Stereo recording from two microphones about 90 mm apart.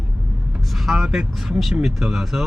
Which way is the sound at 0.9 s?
5° right (ahead or behind).